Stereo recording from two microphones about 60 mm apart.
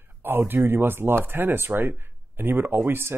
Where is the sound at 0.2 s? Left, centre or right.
Right.